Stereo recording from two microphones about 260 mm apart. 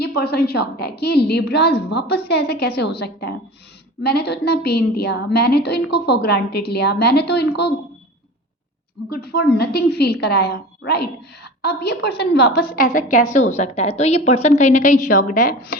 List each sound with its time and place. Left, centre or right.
0.0 s a woman's voice: left
9.0 s a woman's voice: left